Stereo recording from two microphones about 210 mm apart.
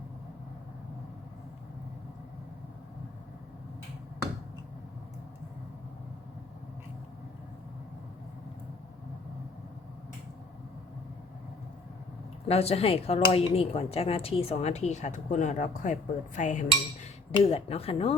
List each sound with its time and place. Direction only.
12.5 s speech: 30° left (ahead or behind)